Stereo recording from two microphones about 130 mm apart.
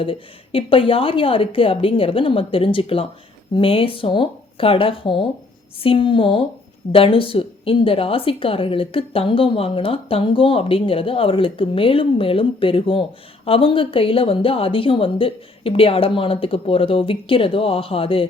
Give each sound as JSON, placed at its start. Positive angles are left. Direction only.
{"t": 0.0, "sound": "a woman's voice", "side_deg": 45}